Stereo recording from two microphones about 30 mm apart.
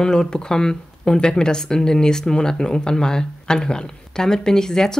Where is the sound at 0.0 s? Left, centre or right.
Left.